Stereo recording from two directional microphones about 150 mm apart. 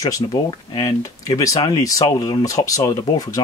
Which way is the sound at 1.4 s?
25° left (ahead or behind).